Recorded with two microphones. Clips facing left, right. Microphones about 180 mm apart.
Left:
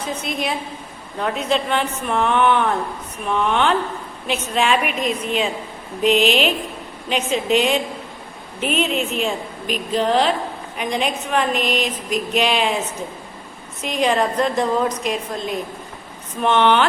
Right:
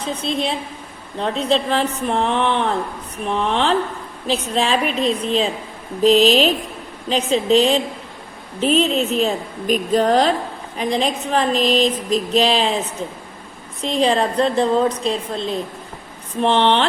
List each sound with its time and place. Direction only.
0.0 s a woman's voice: 30° right (ahead or behind)
13.8 s speech: 30° right (ahead or behind)